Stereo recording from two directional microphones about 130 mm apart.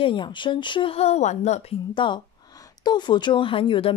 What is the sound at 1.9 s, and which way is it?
Speech, 40° left (ahead or behind).